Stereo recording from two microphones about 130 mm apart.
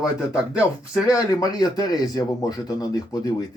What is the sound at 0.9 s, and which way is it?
Speech, 25° left (ahead or behind).